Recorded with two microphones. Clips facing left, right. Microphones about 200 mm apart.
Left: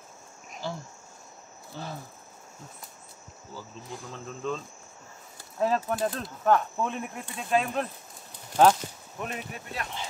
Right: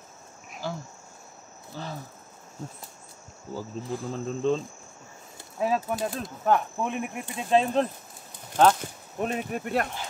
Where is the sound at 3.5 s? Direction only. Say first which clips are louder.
Right 8 dB; 45° right (ahead or behind).